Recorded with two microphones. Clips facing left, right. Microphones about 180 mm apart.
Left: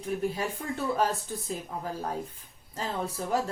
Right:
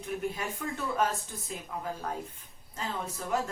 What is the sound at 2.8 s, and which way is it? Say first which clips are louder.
Speech: left 4 dB; 35° left (ahead or behind).